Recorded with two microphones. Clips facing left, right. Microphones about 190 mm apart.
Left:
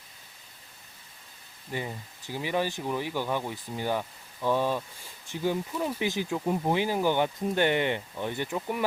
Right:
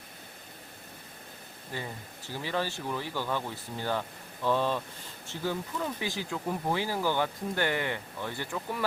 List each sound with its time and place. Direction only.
1.7 s speech: 15° left (ahead or behind)